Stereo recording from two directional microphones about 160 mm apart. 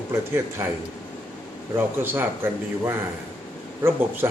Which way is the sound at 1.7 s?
15° right (ahead or behind).